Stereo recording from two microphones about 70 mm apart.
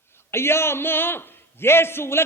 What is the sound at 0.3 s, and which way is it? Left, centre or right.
A man's voice, left.